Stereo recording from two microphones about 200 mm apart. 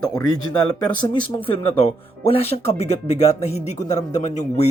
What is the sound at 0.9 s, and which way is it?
Speech, 20° left (ahead or behind).